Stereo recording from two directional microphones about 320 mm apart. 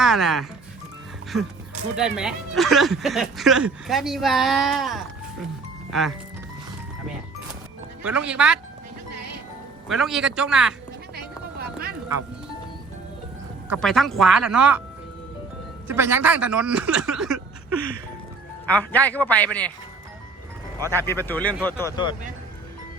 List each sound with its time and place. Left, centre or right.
0.0 s speech: centre
2.0 s speech: centre
8.0 s speech: centre
9.9 s speech: centre
11.6 s music: right
13.7 s speech: centre
15.9 s speech: centre
18.7 s speech: centre
20.8 s speech: centre